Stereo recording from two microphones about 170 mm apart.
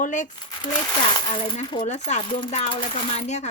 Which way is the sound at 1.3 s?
30° left (ahead or behind).